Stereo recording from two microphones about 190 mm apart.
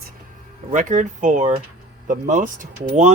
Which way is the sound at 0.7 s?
40° right (ahead or behind).